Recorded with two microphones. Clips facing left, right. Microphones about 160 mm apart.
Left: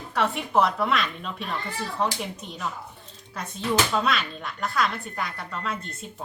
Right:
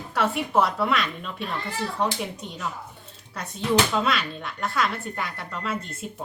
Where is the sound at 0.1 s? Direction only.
Centre (ahead or behind).